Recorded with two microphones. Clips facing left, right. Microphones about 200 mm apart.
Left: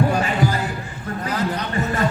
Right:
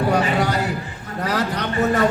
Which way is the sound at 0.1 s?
75° right (ahead or behind).